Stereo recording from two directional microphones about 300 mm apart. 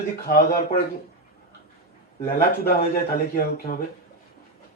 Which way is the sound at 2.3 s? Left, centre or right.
Left.